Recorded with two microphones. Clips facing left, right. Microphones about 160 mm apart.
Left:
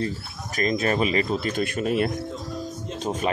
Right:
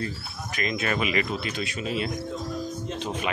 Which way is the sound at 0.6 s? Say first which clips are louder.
Left 5 dB; 40° left (ahead or behind).